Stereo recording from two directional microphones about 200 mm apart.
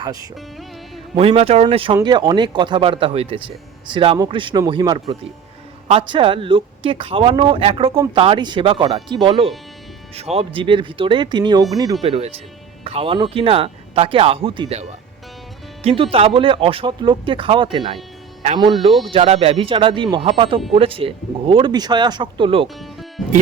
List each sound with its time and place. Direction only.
1.1 s speech: 30° right (ahead or behind)
12.0 s speech: 30° right (ahead or behind)
22.6 s music: centre (ahead or behind)